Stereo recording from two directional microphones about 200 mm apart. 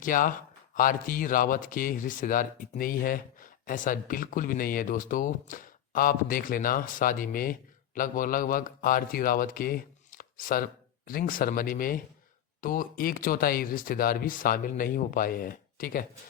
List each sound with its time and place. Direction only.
0.0 s a man's voice: 40° left (ahead or behind)